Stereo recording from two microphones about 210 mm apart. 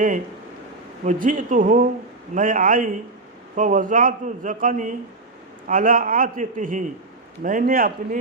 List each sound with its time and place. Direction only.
1.0 s a man's voice: 40° right (ahead or behind)